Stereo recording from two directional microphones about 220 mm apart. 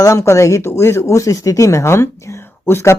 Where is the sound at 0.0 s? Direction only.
15° left (ahead or behind).